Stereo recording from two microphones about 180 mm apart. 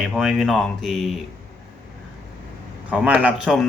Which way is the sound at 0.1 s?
5° right (ahead or behind).